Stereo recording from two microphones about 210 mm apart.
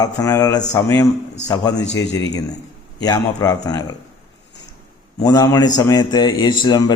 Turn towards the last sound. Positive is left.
turn(degrees=20)  # may be behind; listen again after turning